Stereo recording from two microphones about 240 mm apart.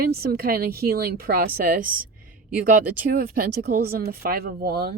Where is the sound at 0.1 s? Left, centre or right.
Right.